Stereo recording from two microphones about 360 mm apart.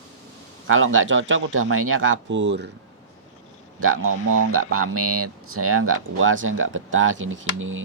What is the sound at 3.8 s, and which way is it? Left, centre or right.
Speech, right.